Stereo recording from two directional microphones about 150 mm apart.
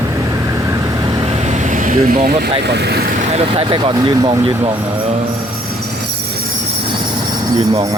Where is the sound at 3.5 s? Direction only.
35° right (ahead or behind).